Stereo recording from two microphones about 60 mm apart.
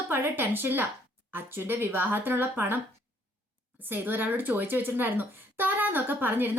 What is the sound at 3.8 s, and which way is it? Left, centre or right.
Speech, right.